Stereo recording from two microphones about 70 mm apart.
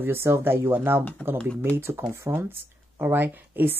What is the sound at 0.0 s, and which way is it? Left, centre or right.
Speech, right.